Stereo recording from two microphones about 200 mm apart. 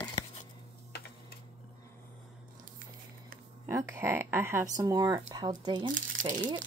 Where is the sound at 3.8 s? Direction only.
10° right (ahead or behind).